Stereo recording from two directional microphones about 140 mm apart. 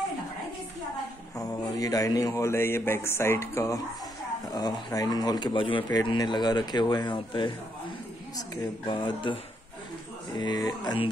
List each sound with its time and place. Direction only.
1.3 s speech: 25° left (ahead or behind)